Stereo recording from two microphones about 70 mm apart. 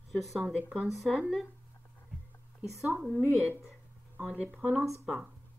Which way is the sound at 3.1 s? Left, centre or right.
Right.